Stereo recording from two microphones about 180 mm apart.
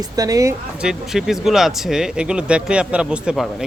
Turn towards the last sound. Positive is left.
turn(degrees=-5)  # may be behind; listen again after turning